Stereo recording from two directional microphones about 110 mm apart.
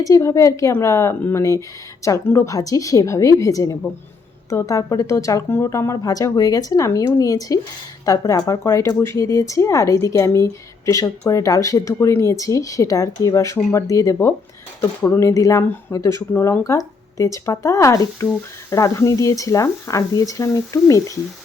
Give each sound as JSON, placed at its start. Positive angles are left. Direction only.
{"t": 0.0, "sound": "speech", "side_deg": 30}